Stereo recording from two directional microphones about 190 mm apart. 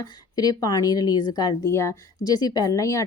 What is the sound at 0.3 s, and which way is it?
A woman's voice, 20° left (ahead or behind).